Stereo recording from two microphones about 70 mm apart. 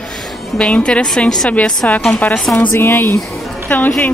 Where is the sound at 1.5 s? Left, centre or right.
Centre.